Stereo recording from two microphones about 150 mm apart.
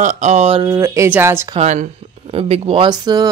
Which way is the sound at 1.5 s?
55° right (ahead or behind).